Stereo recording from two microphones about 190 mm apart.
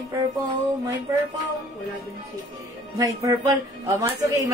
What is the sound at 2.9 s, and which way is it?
Speech, 20° right (ahead or behind).